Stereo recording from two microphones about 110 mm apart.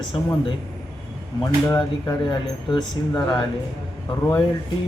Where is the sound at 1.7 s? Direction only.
40° left (ahead or behind).